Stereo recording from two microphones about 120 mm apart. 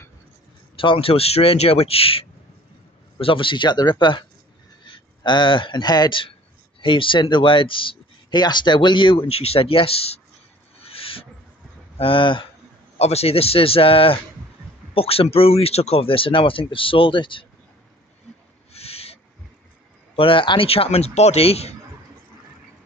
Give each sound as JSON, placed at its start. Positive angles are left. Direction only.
{"t": 0.9, "sound": "speech", "side_deg": 55}
{"t": 10.8, "sound": "owl", "side_deg": 50}
{"t": 12.0, "sound": "speech", "side_deg": 45}
{"t": 13.0, "sound": "speech", "side_deg": 60}
{"t": 18.7, "sound": "owl", "side_deg": 55}
{"t": 20.2, "sound": "a man's voice", "side_deg": 45}